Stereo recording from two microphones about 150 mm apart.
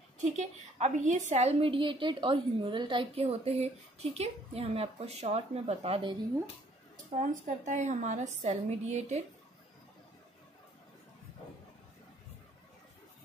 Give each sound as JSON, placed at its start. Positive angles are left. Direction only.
{"t": 0.2, "sound": "a woman's voice", "side_deg": -50}
{"t": 7.2, "sound": "a woman's voice", "side_deg": -55}